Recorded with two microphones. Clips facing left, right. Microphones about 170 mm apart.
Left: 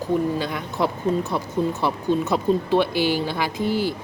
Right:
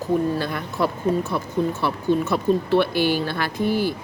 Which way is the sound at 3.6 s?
15° right (ahead or behind).